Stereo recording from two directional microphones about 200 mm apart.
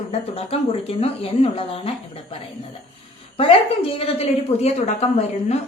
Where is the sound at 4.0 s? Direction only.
30° left (ahead or behind).